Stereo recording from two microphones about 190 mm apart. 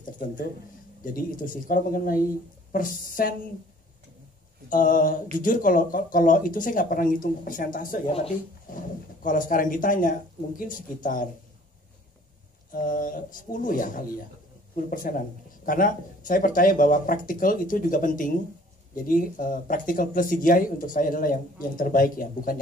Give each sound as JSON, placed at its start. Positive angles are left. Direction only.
{"t": 1.0, "sound": "speech", "side_deg": 45}
{"t": 4.6, "sound": "speech", "side_deg": 45}
{"t": 12.7, "sound": "speech", "side_deg": 45}